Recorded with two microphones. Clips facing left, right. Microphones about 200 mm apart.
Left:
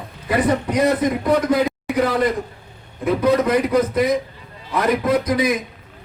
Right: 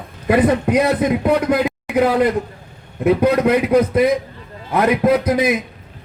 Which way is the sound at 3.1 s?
60° right (ahead or behind).